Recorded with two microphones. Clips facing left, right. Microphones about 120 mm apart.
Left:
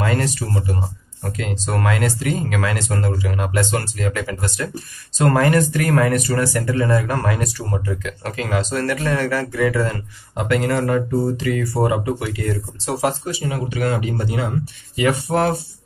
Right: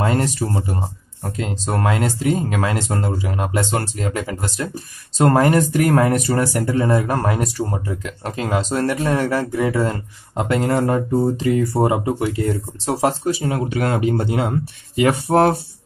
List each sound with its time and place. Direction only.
0.0 s speech: 25° right (ahead or behind)
12.8 s speech: 35° right (ahead or behind)